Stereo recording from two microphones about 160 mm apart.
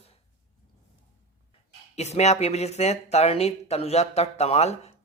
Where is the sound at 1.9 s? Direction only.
45° left (ahead or behind).